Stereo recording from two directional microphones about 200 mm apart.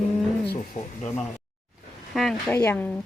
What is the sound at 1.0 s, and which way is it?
Speech, 5° left (ahead or behind).